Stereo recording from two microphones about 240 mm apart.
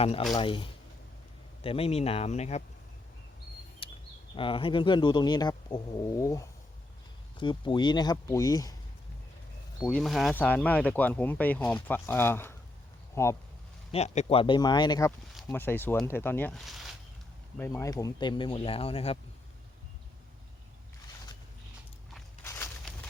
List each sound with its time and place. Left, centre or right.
0.0 s speech: left
3.8 s a sound: left
4.4 s speech: left
9.8 s speech: centre
13.9 s speech: left; by 16.9 s centre
17.6 s speech: centre
22.4 s a sound: centre